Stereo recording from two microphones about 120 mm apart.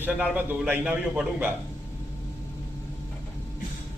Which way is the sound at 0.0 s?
10° right (ahead or behind).